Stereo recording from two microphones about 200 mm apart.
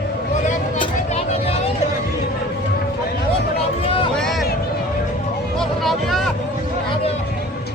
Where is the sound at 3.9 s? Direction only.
25° left (ahead or behind).